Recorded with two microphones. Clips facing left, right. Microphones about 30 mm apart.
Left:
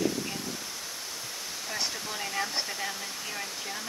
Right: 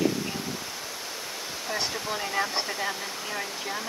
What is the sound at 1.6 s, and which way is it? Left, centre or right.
Speech, centre.